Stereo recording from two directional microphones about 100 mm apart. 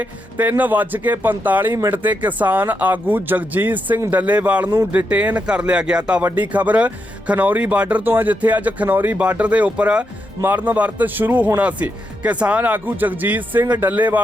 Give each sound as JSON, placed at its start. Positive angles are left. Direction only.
{"t": 0.0, "sound": "speech", "side_deg": -15}